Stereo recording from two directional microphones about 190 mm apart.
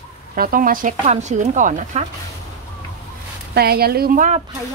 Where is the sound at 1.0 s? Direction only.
35° right (ahead or behind).